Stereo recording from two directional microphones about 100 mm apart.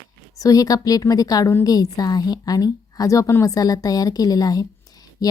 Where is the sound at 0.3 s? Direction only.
35° left (ahead or behind).